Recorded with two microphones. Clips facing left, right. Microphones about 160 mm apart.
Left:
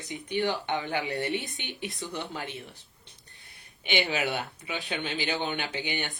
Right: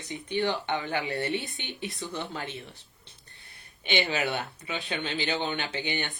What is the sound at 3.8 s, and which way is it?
A woman's voice, 15° left (ahead or behind).